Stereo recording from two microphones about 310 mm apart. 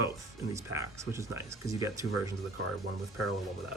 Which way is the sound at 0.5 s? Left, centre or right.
Centre.